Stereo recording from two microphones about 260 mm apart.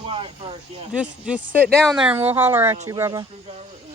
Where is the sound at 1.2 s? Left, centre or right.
Centre.